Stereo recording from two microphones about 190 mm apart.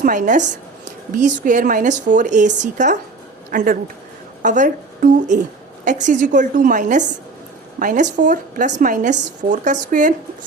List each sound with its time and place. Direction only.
0.0 s a woman's voice: 45° right (ahead or behind)